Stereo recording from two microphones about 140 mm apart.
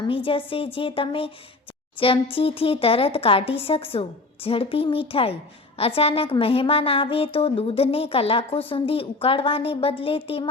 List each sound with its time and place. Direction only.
0.0 s a woman's voice: 40° left (ahead or behind)